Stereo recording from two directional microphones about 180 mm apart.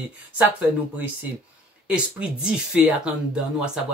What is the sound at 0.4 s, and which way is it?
Speech, 10° right (ahead or behind).